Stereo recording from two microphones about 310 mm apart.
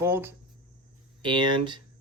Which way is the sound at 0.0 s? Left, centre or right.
Centre.